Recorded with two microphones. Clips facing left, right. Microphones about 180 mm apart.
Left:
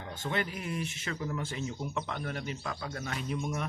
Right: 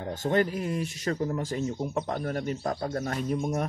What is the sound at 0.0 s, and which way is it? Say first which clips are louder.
Speech: right 9 dB; 45° right (ahead or behind).